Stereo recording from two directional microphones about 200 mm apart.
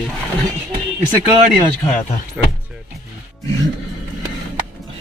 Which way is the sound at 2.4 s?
5° right (ahead or behind).